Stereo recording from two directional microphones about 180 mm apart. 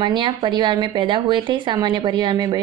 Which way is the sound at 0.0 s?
25° right (ahead or behind).